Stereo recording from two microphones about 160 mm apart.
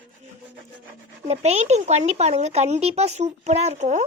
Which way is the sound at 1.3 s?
45° right (ahead or behind).